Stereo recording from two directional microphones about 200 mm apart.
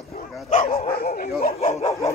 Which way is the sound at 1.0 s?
50° left (ahead or behind).